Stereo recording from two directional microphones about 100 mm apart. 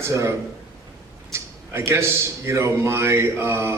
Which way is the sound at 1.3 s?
25° right (ahead or behind).